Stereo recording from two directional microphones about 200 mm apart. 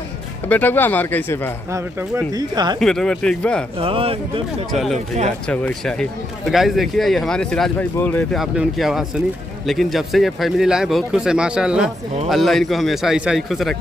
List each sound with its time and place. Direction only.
0.5 s speech: 10° left (ahead or behind)
1.7 s speech: 15° right (ahead or behind)
2.8 s speech: 5° left (ahead or behind)
3.8 s speech: 30° right (ahead or behind)
5.5 s speech: 5° left (ahead or behind)